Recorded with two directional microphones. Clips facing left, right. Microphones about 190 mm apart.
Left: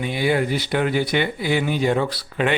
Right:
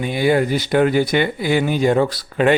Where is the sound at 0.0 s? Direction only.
45° right (ahead or behind).